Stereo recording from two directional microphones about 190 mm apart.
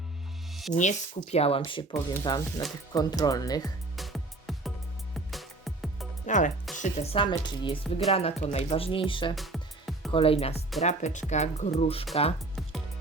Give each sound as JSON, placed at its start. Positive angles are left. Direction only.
{"t": 0.7, "sound": "speech", "side_deg": 40}
{"t": 3.9, "sound": "music", "side_deg": 0}
{"t": 6.2, "sound": "music", "side_deg": 40}
{"t": 6.7, "sound": "speech", "side_deg": 35}
{"t": 9.3, "sound": "music", "side_deg": 0}
{"t": 10.1, "sound": "speech", "side_deg": 30}